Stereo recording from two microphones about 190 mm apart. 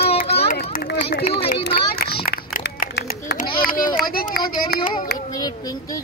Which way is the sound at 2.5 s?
55° left (ahead or behind).